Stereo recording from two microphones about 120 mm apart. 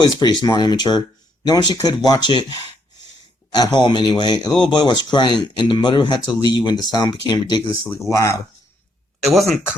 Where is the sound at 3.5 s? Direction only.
35° left (ahead or behind).